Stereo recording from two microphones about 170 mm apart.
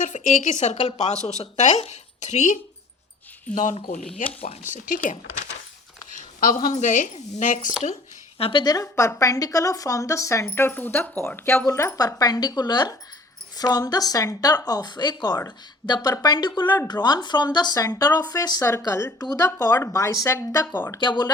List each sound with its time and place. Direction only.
0.0 s a woman's voice: 45° left (ahead or behind)
4.4 s a woman's voice: 35° left (ahead or behind)
8.4 s a woman's voice: 30° left (ahead or behind)
16.6 s speech: 10° left (ahead or behind)
16.9 s a woman's voice: 25° left (ahead or behind)
21.0 s a woman's voice: 25° left (ahead or behind)